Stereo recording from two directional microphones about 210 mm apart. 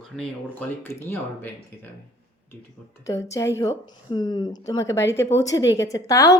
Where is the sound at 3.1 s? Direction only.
15° left (ahead or behind).